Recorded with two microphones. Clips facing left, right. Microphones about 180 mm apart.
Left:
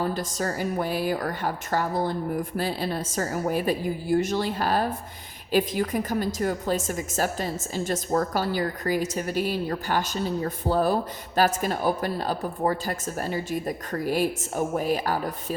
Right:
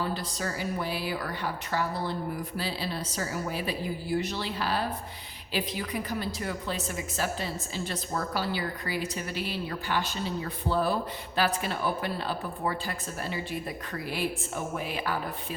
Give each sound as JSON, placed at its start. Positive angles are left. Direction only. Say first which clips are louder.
{"t": 0.0, "sound": "a woman's voice", "louder": "left 5 dB", "side_deg": 45}